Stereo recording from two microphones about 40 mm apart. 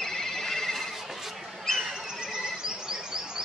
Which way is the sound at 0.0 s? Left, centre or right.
Centre.